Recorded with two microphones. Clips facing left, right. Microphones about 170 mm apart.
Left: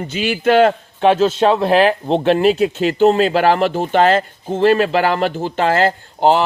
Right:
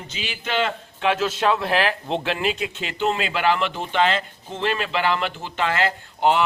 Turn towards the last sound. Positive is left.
turn(degrees=35)  # may be behind; listen again after turning